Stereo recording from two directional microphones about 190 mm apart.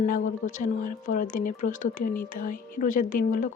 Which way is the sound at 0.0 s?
45° left (ahead or behind).